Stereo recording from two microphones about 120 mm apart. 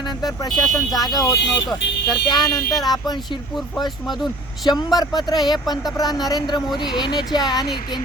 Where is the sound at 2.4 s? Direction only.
30° left (ahead or behind).